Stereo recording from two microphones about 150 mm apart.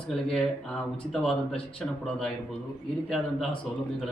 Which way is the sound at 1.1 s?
5° left (ahead or behind).